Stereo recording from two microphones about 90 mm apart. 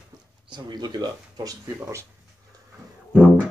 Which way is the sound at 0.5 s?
55° right (ahead or behind).